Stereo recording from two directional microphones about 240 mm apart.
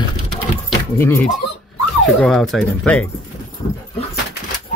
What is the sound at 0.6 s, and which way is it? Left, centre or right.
Keys jangling, centre.